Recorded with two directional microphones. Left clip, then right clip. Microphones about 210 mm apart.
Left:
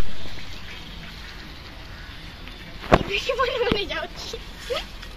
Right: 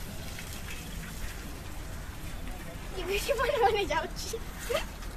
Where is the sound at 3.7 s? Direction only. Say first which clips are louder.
Left 2 dB; 55° right (ahead or behind).